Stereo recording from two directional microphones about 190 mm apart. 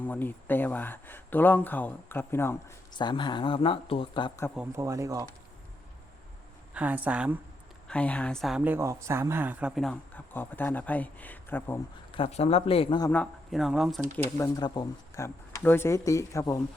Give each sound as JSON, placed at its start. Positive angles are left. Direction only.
{"t": 0.0, "sound": "speech", "side_deg": 10}
{"t": 4.5, "sound": "speech", "side_deg": -10}
{"t": 6.7, "sound": "speech", "side_deg": -10}
{"t": 7.9, "sound": "speech", "side_deg": 5}
{"t": 12.1, "sound": "speech", "side_deg": 30}
{"t": 13.1, "sound": "speech", "side_deg": 5}
{"t": 14.3, "sound": "speech", "side_deg": 20}